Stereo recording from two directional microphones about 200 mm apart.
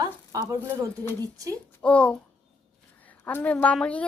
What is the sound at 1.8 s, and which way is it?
A woman's voice, 5° left (ahead or behind).